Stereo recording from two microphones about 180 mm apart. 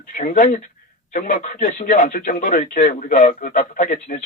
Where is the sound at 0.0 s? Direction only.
50° left (ahead or behind).